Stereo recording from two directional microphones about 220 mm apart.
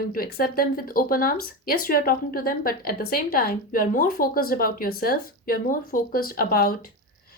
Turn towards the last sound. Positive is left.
turn(degrees=40)  # may be behind; listen again after turning